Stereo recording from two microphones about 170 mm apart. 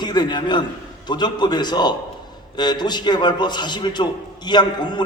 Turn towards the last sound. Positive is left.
turn(degrees=25)  # may be behind; listen again after turning